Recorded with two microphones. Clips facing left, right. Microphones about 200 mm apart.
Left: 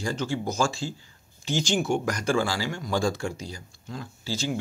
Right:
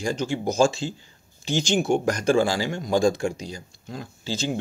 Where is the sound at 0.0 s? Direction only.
15° right (ahead or behind).